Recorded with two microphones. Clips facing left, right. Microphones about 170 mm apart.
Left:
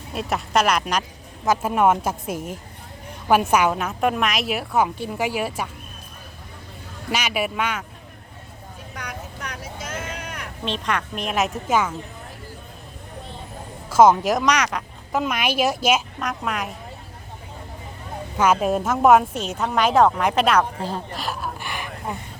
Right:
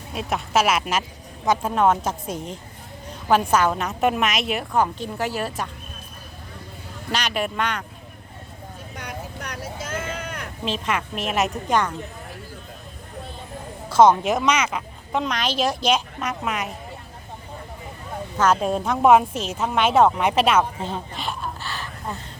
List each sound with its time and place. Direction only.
0.1 s a woman's voice: centre (ahead or behind)
1.5 s a woman's voice: 10° left (ahead or behind)
7.1 s a woman's voice: 10° left (ahead or behind)
9.0 s vehicle: 30° right (ahead or behind)
10.7 s a woman's voice: 5° right (ahead or behind)
13.9 s speech: 5° left (ahead or behind)
15.2 s a woman's voice: 10° left (ahead or behind)
18.3 s a woman's voice: 10° left (ahead or behind)
21.6 s a sound: 15° left (ahead or behind)